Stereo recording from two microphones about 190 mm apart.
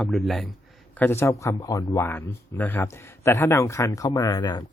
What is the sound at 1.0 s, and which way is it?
Speech, 10° left (ahead or behind).